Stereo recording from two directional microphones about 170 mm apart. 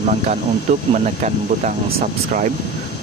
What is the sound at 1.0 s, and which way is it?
Speech, 45° right (ahead or behind).